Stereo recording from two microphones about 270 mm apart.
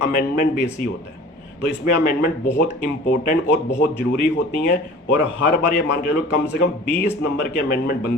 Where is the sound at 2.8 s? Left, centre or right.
Left.